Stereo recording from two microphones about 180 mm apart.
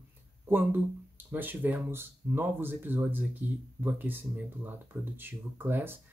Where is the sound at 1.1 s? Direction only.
10° right (ahead or behind).